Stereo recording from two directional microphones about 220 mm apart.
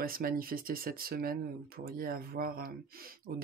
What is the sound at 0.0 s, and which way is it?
Speech, 40° right (ahead or behind).